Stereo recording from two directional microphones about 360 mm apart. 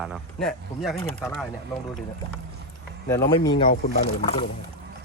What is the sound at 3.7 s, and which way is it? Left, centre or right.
Speech, left.